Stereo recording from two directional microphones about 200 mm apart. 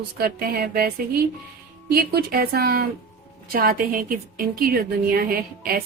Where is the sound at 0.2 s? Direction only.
45° right (ahead or behind).